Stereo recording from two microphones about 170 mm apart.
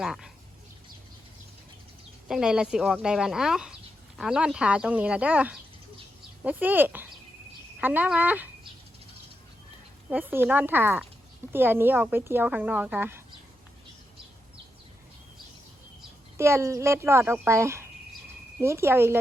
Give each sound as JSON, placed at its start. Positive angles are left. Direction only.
{"t": 0.0, "sound": "speech", "side_deg": 0}
{"t": 2.2, "sound": "speech", "side_deg": -5}
{"t": 10.1, "sound": "speech", "side_deg": -10}
{"t": 16.4, "sound": "speech", "side_deg": -15}